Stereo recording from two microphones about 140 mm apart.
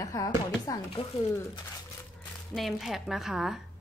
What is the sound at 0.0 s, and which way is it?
Speech, 25° left (ahead or behind).